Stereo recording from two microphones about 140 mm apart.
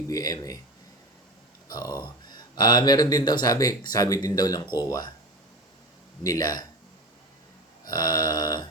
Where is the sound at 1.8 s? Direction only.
15° right (ahead or behind).